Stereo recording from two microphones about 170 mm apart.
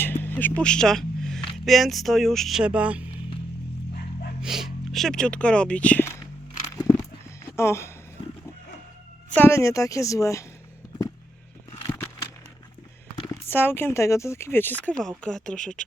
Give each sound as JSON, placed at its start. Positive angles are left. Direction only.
{"t": 0.0, "sound": "a sound", "side_deg": 10}
{"t": 1.5, "sound": "speech", "side_deg": 0}
{"t": 4.4, "sound": "speech", "side_deg": -5}
{"t": 7.4, "sound": "a sound", "side_deg": 15}
{"t": 9.3, "sound": "speech", "side_deg": 15}
{"t": 13.3, "sound": "speech", "side_deg": 10}